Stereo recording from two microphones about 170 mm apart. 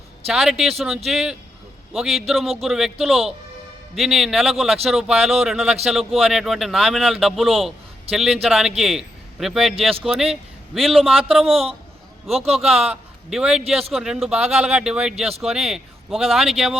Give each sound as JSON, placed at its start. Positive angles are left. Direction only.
{"t": 0.3, "sound": "a man's voice", "side_deg": -5}
{"t": 11.4, "sound": "a man's voice", "side_deg": -35}
{"t": 12.9, "sound": "a man's voice", "side_deg": -5}